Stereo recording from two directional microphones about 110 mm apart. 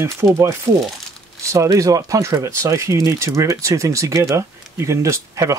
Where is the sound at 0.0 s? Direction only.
25° right (ahead or behind).